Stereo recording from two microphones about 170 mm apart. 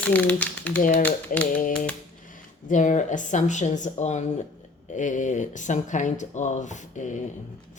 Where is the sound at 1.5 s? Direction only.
50° left (ahead or behind).